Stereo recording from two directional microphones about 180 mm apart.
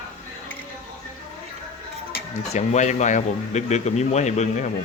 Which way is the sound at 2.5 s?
40° left (ahead or behind).